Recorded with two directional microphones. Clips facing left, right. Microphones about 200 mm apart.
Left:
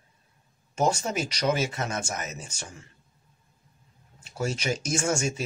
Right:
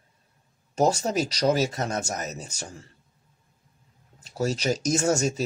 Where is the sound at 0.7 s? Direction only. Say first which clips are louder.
Right 3 dB; 40° right (ahead or behind).